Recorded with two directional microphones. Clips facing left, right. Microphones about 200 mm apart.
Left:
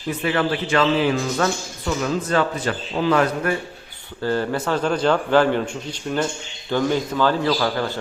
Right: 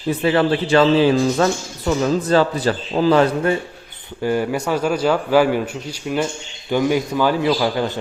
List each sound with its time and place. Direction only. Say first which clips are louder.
0.2 s a man's voice: right 5 dB; 30° right (ahead or behind)
4.2 s a man's voice: right 2 dB; 15° right (ahead or behind)